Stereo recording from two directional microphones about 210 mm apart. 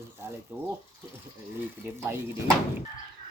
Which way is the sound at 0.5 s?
10° right (ahead or behind).